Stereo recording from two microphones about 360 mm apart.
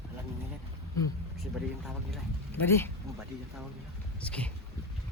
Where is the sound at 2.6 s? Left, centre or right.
Centre.